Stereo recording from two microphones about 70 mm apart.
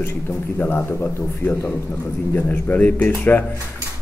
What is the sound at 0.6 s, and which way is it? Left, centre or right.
Speech, left.